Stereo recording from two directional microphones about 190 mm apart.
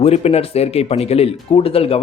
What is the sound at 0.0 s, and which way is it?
Speech, 35° left (ahead or behind).